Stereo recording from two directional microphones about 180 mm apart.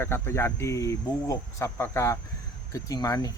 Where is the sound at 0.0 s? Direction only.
15° left (ahead or behind).